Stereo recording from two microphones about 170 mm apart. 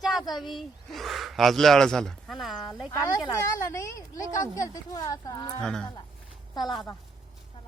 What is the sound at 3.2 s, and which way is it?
A woman's voice, 15° left (ahead or behind).